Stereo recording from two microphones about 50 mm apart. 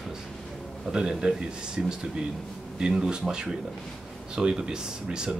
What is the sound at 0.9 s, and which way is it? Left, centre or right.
A man's voice, centre.